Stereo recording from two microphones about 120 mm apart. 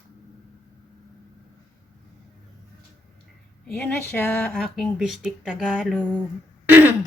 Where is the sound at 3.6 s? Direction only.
10° left (ahead or behind).